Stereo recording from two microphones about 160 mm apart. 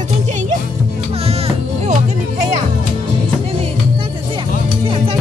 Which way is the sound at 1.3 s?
40° right (ahead or behind).